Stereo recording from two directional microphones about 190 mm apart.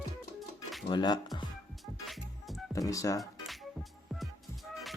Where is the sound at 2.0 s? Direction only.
Centre (ahead or behind).